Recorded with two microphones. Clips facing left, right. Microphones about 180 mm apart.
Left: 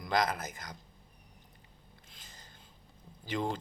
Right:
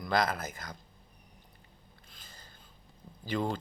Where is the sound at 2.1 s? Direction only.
20° left (ahead or behind).